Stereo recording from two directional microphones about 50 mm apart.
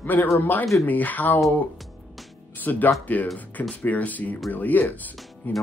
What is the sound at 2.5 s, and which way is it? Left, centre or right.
Speech, left.